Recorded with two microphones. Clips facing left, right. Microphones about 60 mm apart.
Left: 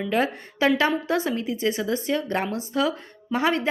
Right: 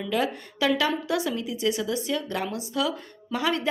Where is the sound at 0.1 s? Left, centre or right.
Left.